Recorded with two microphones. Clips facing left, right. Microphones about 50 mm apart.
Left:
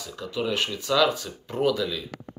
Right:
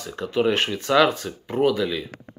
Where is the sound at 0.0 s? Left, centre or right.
Right.